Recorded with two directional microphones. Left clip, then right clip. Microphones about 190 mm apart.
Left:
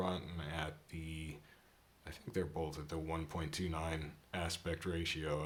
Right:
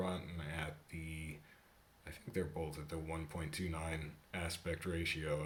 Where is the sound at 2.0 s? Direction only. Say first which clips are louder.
Left 1 dB; 20° left (ahead or behind).